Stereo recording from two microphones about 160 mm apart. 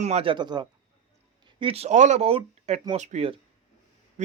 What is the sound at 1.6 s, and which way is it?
Speech, 40° right (ahead or behind).